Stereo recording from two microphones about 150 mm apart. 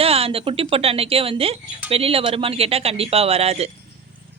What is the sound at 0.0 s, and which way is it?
Speech, 40° right (ahead or behind).